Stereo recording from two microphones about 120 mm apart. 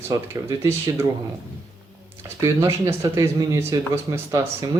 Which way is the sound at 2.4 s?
25° right (ahead or behind).